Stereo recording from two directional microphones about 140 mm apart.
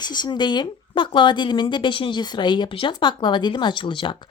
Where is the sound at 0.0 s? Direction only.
30° left (ahead or behind).